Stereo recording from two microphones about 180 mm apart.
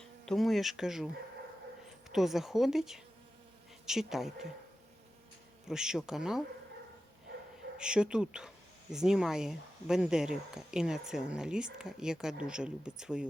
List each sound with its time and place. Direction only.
0.0 s speech: centre (ahead or behind)
2.0 s speech: centre (ahead or behind)
5.6 s speech: 5° right (ahead or behind)
7.8 s speech: 5° right (ahead or behind)